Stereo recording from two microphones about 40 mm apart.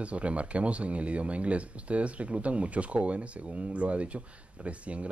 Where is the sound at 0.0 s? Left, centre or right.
Right.